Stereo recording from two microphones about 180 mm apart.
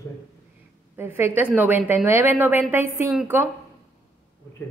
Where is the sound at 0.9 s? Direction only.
15° right (ahead or behind).